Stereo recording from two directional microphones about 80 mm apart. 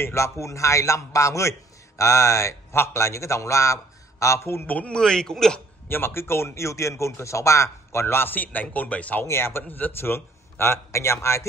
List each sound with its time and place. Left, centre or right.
0.0 s speech: left
4.6 s a man's voice: centre
5.9 s speech: left
9.2 s speech: left